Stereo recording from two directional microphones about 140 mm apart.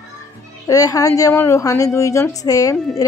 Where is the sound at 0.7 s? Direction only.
25° left (ahead or behind).